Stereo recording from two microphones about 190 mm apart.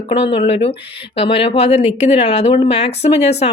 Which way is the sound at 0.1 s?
30° left (ahead or behind).